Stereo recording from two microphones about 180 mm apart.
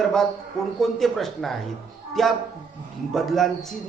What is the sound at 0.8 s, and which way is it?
A man's voice, centre (ahead or behind).